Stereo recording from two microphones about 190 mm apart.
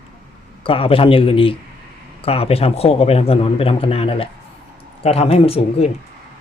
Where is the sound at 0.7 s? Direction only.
30° left (ahead or behind).